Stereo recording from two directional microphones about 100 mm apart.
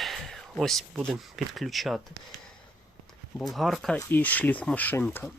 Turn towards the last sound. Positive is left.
turn(degrees=20)  # may be behind; listen again after turning